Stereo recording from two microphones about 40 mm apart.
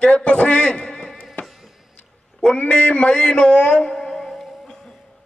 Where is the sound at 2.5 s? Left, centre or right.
Left.